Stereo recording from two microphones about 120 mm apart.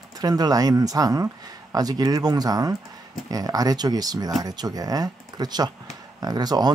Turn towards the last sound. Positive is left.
turn(degrees=-35)  # may be behind; listen again after turning